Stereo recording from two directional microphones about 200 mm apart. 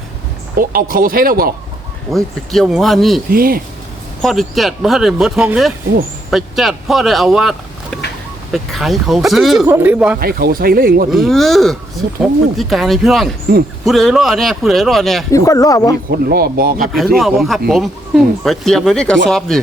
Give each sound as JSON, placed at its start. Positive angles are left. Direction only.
{"t": 0.5, "sound": "speech", "side_deg": -45}
{"t": 2.1, "sound": "speech", "side_deg": 0}
{"t": 3.2, "sound": "speech", "side_deg": -45}
{"t": 4.2, "sound": "speech", "side_deg": 0}
{"t": 8.5, "sound": "speech", "side_deg": 0}
{"t": 9.6, "sound": "speech", "side_deg": -10}
{"t": 10.2, "sound": "speech", "side_deg": -50}
{"t": 11.1, "sound": "speech", "side_deg": 0}
{"t": 15.3, "sound": "speech", "side_deg": 15}
{"t": 16.0, "sound": "speech", "side_deg": -50}
{"t": 17.2, "sound": "speech", "side_deg": 0}